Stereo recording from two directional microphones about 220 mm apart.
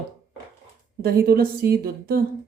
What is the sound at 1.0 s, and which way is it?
Speech, 40° right (ahead or behind).